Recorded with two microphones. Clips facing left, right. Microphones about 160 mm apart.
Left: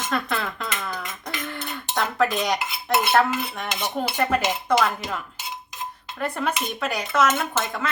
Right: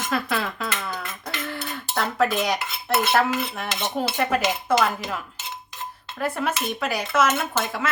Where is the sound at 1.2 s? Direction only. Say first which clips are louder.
Right 2 dB; 5° right (ahead or behind).